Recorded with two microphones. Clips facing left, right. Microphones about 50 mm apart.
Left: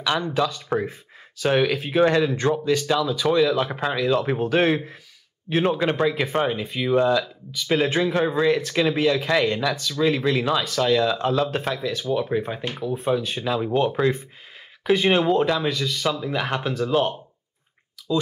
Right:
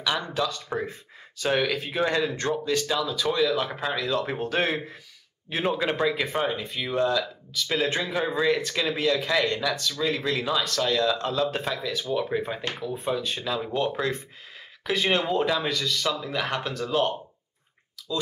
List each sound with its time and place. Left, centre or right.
0.0 s speech: centre
0.4 s speech: centre